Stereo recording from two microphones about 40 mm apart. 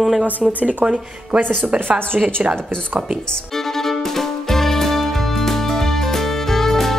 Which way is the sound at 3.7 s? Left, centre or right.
Centre.